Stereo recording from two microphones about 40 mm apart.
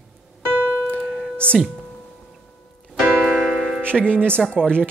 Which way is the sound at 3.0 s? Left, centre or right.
Right.